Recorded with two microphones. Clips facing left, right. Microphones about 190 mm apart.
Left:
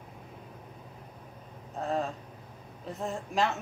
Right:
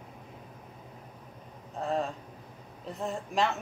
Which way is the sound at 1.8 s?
Centre (ahead or behind).